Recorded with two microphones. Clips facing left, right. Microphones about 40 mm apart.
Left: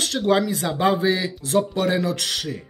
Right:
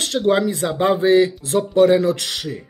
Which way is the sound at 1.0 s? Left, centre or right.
Right.